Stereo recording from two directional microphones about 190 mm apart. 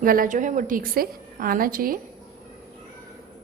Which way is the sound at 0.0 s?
45° right (ahead or behind).